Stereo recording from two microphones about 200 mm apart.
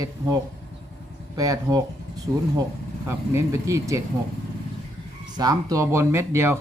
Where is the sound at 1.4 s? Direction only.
20° right (ahead or behind).